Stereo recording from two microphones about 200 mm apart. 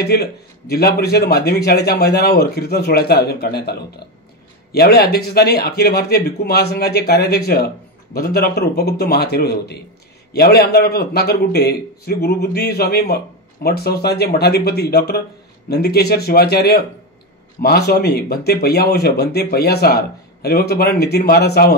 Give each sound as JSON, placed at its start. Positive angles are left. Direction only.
{"t": 0.0, "sound": "a man's voice", "side_deg": 50}
{"t": 4.7, "sound": "a man's voice", "side_deg": 50}